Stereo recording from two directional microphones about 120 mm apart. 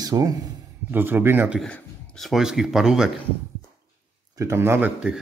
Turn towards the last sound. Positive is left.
turn(degrees=-15)  # may be behind; listen again after turning